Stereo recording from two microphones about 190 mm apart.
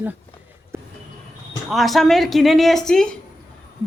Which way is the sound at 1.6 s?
Centre (ahead or behind).